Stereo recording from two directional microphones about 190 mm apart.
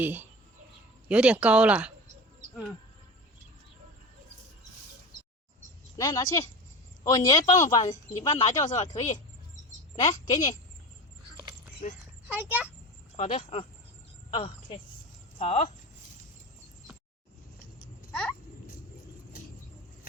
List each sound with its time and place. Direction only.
0.0 s speech: 10° right (ahead or behind)
6.0 s speech: 20° left (ahead or behind); by 8.9 s 35° left (ahead or behind)
9.9 s a woman's voice: 30° left (ahead or behind)
11.8 s a woman's voice: 40° left (ahead or behind)
12.3 s speech: 10° right (ahead or behind)
13.1 s a woman's voice: 30° left (ahead or behind)
18.1 s a sound: 5° left (ahead or behind)